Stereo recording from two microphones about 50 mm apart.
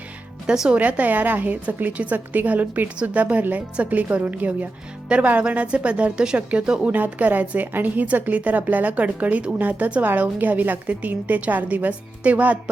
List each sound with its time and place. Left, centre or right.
0.7 s a woman's voice: right